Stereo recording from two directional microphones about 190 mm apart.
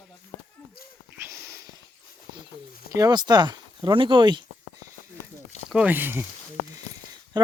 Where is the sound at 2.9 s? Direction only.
20° right (ahead or behind).